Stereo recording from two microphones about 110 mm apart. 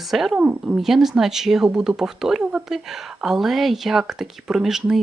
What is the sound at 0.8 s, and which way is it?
Speech, centre (ahead or behind).